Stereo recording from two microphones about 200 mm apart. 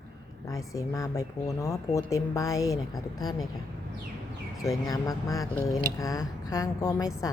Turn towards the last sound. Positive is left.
turn(degrees=20)  # may be behind; listen again after turning